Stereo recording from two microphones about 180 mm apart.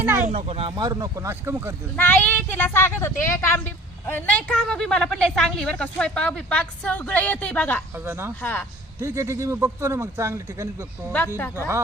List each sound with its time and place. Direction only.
0.0 s a man's voice: 10° right (ahead or behind)
0.3 s speech: 35° right (ahead or behind)
0.8 s a man's voice: 20° right (ahead or behind)
2.0 s speech: 10° left (ahead or behind)
7.9 s a man's voice: 15° right (ahead or behind)
8.4 s speech: 10° left (ahead or behind)
9.0 s a man's voice: 15° right (ahead or behind)